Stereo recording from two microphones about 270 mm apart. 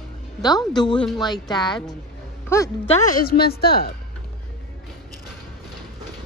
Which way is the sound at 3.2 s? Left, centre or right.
Left.